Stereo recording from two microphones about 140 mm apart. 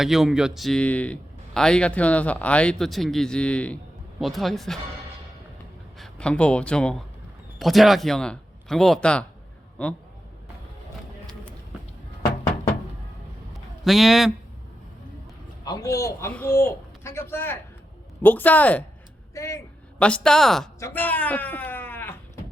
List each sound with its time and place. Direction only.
0.0 s a man's voice: 5° right (ahead or behind)
6.0 s a man's voice: 5° left (ahead or behind)
13.8 s speech: centre (ahead or behind)
15.6 s a man's voice: 25° left (ahead or behind)
20.0 s speech: 10° left (ahead or behind)
20.7 s speech: 15° left (ahead or behind)